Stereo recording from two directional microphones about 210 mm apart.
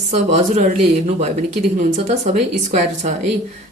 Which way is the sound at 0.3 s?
35° right (ahead or behind).